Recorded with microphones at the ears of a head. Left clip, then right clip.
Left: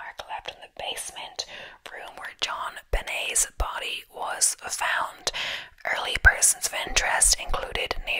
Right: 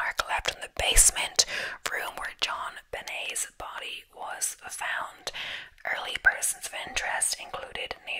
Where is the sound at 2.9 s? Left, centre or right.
Left.